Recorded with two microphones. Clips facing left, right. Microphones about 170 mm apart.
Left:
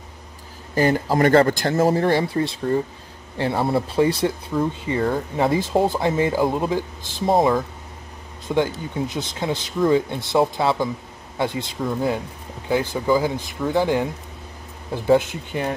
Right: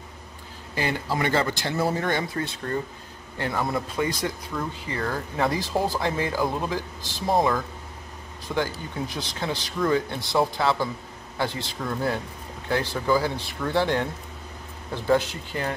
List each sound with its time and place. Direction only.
0.7 s speech: 40° left (ahead or behind); by 14.0 s 10° left (ahead or behind)
14.9 s speech: 20° left (ahead or behind)